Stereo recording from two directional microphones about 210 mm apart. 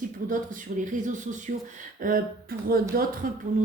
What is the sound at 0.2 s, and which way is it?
Speech, 40° right (ahead or behind).